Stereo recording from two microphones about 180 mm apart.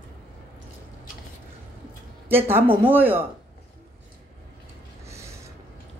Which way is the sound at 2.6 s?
30° right (ahead or behind).